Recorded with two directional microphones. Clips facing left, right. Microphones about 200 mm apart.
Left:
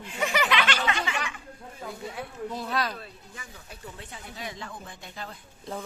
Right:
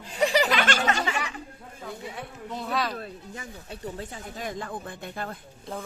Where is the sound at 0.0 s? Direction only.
35° right (ahead or behind).